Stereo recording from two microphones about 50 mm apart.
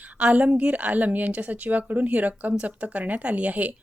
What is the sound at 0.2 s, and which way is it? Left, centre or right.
A woman's voice, right.